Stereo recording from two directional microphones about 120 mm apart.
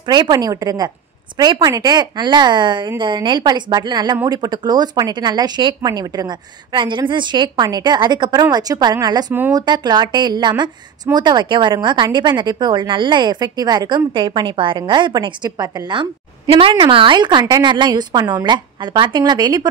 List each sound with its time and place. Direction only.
0.0 s a woman's voice: 40° right (ahead or behind)